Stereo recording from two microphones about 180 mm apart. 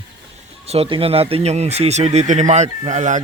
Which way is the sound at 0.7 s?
30° right (ahead or behind).